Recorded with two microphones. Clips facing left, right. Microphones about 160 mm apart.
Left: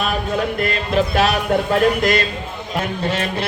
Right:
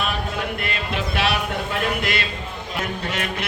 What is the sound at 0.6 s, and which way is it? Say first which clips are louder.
A man's voice: left 8 dB; 40° left (ahead or behind).